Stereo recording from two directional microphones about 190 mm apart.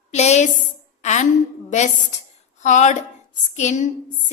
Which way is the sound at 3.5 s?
40° left (ahead or behind).